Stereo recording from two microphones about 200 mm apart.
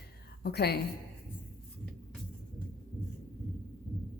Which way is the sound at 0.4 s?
50° left (ahead or behind).